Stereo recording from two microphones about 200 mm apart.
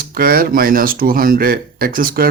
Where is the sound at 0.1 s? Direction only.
45° right (ahead or behind).